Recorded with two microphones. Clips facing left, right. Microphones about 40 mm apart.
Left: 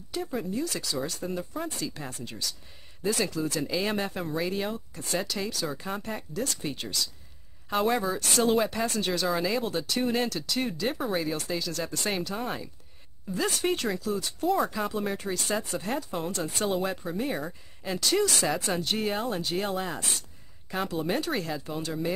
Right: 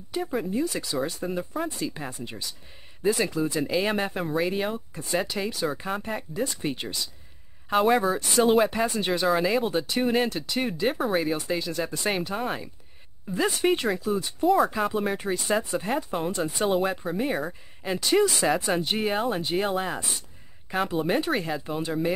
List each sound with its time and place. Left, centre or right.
0.1 s speech: right
3.8 s speech: centre
5.9 s speech: centre
7.7 s speech: centre
8.7 s speech: right
11.0 s speech: centre
11.2 s speech: right